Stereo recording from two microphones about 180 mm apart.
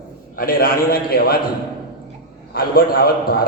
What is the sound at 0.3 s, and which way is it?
A man's voice, 55° left (ahead or behind).